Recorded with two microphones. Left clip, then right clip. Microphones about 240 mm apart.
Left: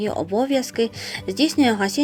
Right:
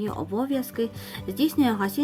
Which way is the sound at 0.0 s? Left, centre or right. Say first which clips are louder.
Left 7 dB; right.